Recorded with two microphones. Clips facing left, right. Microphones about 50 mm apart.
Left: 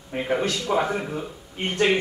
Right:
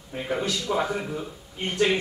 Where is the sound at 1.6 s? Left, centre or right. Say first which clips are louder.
Left 1 dB; left.